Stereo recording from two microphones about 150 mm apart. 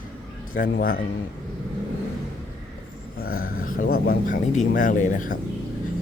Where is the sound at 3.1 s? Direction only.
80° left.